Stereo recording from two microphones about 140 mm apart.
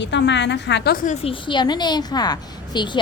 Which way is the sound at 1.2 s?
35° left (ahead or behind).